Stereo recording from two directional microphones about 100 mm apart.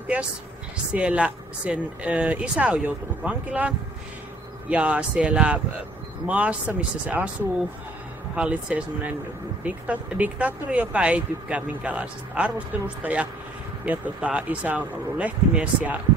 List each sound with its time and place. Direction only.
0.9 s speech: 10° right (ahead or behind)
8.4 s speech: 10° right (ahead or behind)